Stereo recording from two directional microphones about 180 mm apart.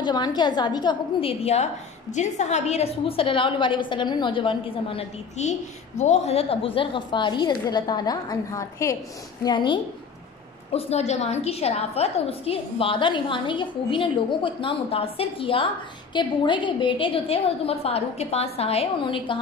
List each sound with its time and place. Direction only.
0.0 s a woman's voice: 25° left (ahead or behind)